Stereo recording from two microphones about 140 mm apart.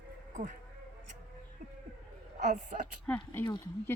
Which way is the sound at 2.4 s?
65° right (ahead or behind).